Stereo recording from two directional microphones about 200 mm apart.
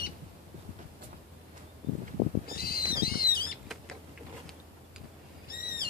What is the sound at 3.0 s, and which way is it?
Squawk, 45° left (ahead or behind).